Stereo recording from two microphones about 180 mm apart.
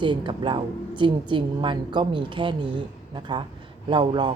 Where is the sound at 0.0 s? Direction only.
25° right (ahead or behind).